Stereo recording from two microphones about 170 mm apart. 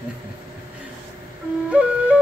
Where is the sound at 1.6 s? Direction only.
5° right (ahead or behind).